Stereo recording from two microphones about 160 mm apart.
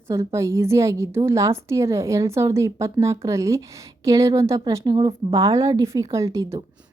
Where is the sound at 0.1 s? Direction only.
20° right (ahead or behind).